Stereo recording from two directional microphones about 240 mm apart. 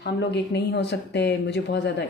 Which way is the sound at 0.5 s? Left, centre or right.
Left.